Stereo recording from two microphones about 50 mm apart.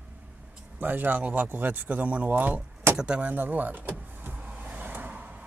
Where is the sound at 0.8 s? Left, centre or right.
Right.